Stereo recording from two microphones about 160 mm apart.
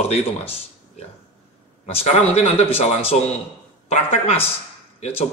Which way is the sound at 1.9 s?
40° left (ahead or behind).